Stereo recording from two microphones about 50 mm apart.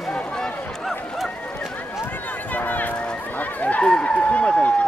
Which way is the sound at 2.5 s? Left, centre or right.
Left.